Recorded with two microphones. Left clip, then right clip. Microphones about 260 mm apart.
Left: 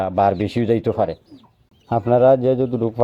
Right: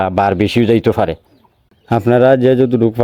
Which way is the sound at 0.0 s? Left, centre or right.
Right.